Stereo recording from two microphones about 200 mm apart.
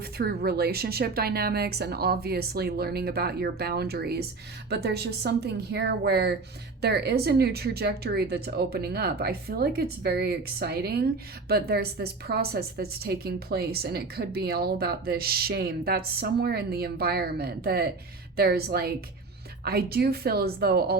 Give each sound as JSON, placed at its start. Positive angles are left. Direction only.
{"t": 0.0, "sound": "a woman's voice", "side_deg": -50}